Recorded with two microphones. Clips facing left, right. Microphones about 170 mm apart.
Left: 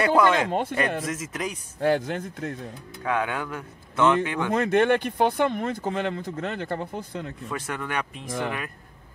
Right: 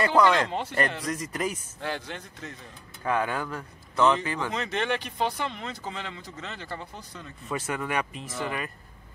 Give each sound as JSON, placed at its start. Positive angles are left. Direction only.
{"t": 0.0, "sound": "speech", "side_deg": 5}
{"t": 0.5, "sound": "speech", "side_deg": 50}
{"t": 1.0, "sound": "speech", "side_deg": 5}
{"t": 1.8, "sound": "speech", "side_deg": 50}
{"t": 3.0, "sound": "speech", "side_deg": 0}
{"t": 4.5, "sound": "speech", "side_deg": 55}
{"t": 7.4, "sound": "speech", "side_deg": -5}
{"t": 8.3, "sound": "speech", "side_deg": 55}